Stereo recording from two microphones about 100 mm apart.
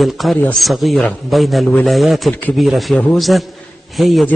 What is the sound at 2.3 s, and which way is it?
Speech, 15° left (ahead or behind).